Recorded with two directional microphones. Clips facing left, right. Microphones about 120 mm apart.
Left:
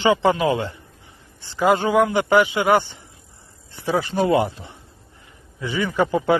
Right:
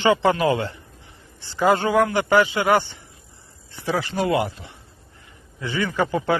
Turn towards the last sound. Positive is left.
turn(degrees=20)  # may be behind; listen again after turning